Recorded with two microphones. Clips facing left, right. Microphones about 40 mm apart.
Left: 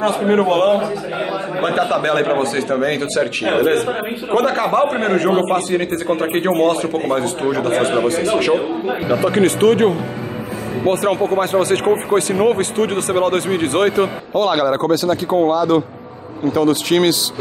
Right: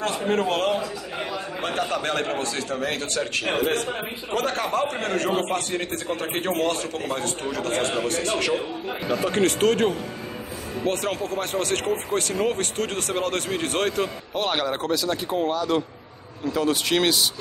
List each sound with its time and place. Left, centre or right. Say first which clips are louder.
0.3 s a man's voice: left 9 dB; centre
14.3 s a man's voice: left 10 dB; centre